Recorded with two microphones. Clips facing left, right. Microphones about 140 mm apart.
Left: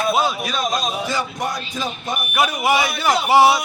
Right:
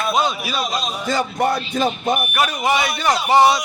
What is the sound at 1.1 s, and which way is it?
Speech, 55° right (ahead or behind).